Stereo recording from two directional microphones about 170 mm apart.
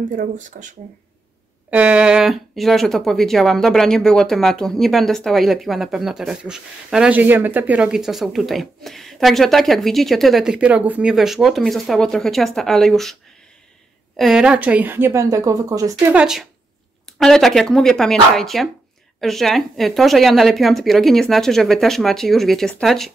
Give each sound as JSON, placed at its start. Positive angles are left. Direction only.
{"t": 0.1, "sound": "speech", "side_deg": -45}
{"t": 1.7, "sound": "speech", "side_deg": -10}
{"t": 16.1, "sound": "speech", "side_deg": -5}